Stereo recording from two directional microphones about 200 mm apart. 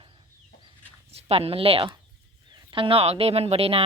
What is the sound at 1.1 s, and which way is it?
Speech, 30° right (ahead or behind).